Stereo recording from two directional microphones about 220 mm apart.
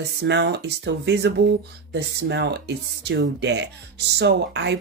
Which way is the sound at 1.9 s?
50° right (ahead or behind).